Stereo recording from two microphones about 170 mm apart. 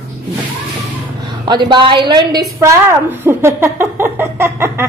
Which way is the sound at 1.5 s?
25° right (ahead or behind).